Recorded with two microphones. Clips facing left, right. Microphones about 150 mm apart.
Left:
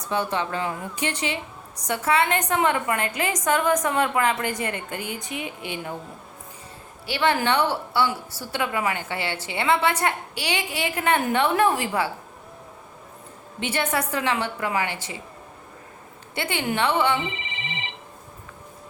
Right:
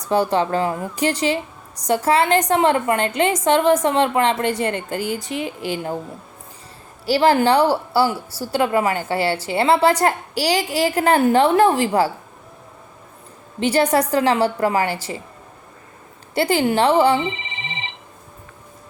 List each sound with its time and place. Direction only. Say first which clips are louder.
0.1 s a woman's voice: right 8 dB; 35° right (ahead or behind)
7.0 s a woman's voice: right 7 dB; 35° right (ahead or behind)
13.6 s a woman's voice: right 9 dB; 35° right (ahead or behind)
16.3 s speech: right 9 dB; 35° right (ahead or behind)